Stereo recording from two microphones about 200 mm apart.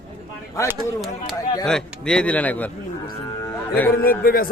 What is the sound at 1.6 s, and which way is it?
Speech, 5° left (ahead or behind).